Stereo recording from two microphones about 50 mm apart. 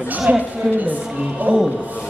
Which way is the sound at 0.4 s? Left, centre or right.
Right.